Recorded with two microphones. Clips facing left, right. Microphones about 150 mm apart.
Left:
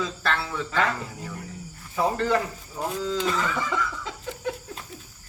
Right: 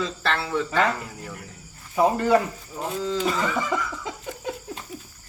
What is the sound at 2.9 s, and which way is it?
Speech, 5° right (ahead or behind).